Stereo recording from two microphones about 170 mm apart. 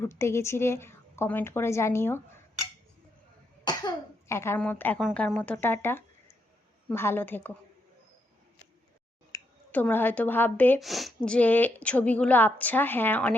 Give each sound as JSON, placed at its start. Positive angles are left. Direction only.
{"t": 0.0, "sound": "speech", "side_deg": 15}
{"t": 3.6, "sound": "cough", "side_deg": 25}
{"t": 4.9, "sound": "speech", "side_deg": 0}
{"t": 9.3, "sound": "a sound", "side_deg": 20}
{"t": 9.7, "sound": "speech", "side_deg": 10}
{"t": 10.8, "sound": "speech", "side_deg": 0}